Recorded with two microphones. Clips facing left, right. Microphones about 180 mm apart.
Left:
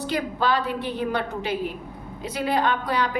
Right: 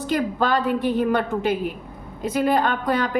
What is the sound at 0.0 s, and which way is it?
A woman's voice, 45° right (ahead or behind).